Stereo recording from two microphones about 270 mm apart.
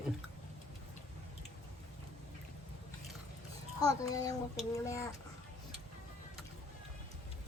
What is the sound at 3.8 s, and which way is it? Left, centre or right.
A child's voice, centre.